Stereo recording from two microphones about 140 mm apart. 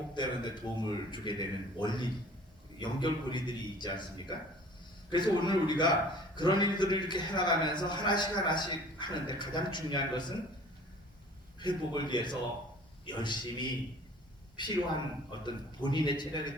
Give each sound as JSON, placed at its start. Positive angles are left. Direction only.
{"t": 0.1, "sound": "a man's voice", "side_deg": 30}
{"t": 11.6, "sound": "a man's voice", "side_deg": 35}